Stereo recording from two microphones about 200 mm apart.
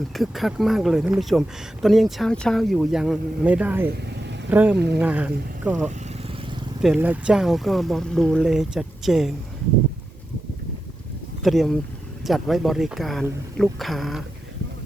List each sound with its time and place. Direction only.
0.1 s speech: centre (ahead or behind)
3.8 s vehicle: 55° right (ahead or behind)
4.4 s speech: 10° right (ahead or behind)
6.8 s speech: 5° right (ahead or behind)
11.4 s speech: centre (ahead or behind)